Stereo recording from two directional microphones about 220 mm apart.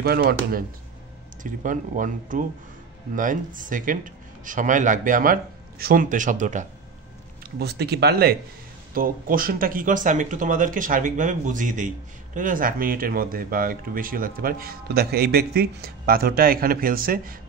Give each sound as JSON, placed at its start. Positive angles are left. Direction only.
{"t": 0.0, "sound": "speech", "side_deg": -45}
{"t": 7.5, "sound": "speech", "side_deg": -45}